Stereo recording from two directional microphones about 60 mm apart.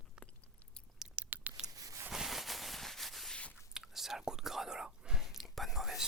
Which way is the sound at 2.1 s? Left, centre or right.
Centre.